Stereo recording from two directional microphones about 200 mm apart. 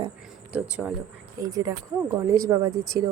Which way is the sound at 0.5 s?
5° right (ahead or behind).